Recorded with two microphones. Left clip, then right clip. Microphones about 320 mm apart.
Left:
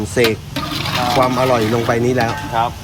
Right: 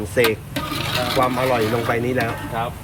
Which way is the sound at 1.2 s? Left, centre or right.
Centre.